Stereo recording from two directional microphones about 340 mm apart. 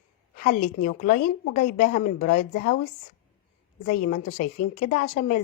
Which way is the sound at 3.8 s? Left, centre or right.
Left.